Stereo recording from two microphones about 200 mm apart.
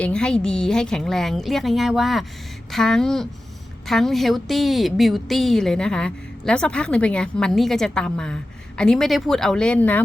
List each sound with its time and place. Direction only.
0.0 s a woman's voice: 5° left (ahead or behind)